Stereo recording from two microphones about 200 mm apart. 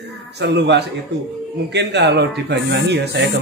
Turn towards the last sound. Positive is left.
turn(degrees=-60)  # may be behind; listen again after turning